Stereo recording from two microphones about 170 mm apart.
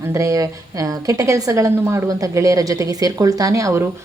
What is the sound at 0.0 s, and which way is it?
A woman's voice, 15° right (ahead or behind).